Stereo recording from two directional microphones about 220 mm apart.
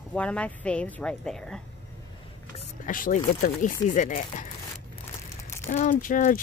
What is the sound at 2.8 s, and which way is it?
Speech, 35° left (ahead or behind).